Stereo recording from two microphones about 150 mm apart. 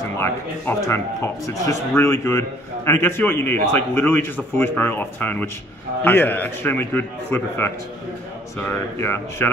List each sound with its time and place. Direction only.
0.2 s a man's voice: 15° left (ahead or behind)